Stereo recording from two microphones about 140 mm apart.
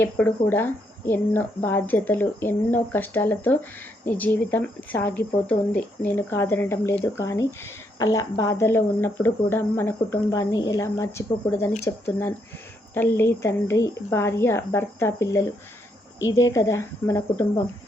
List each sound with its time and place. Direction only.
0.0 s speech: 15° left (ahead or behind)